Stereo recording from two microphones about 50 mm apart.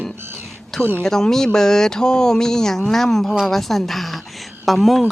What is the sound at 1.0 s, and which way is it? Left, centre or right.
A woman's voice, centre.